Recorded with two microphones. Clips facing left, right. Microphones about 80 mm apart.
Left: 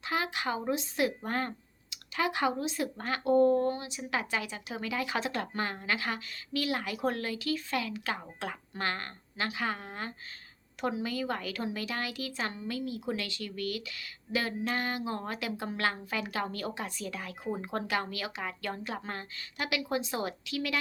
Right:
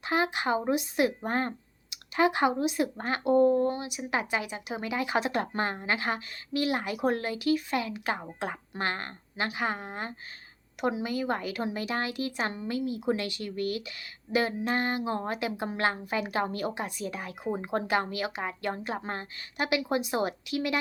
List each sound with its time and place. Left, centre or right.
0.0 s speech: right